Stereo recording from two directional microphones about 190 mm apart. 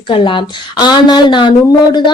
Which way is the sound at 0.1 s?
25° left (ahead or behind).